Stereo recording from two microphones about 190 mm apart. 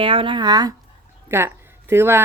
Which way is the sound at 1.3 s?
15° right (ahead or behind).